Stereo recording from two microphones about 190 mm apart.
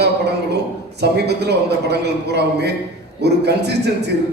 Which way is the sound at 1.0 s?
60° right (ahead or behind).